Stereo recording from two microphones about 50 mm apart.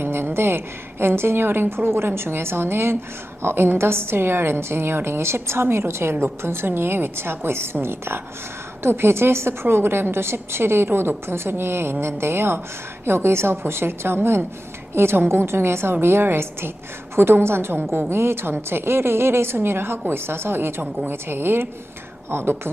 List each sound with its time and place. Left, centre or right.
0.0 s a woman's voice: right